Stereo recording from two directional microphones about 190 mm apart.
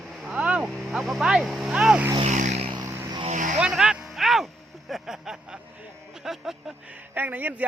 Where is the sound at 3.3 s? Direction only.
40° right (ahead or behind).